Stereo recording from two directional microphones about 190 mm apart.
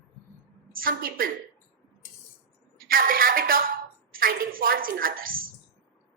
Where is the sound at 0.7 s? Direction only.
50° right (ahead or behind).